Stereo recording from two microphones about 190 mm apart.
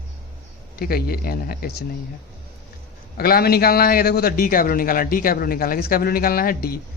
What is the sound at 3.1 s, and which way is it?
A man's voice, 50° left (ahead or behind).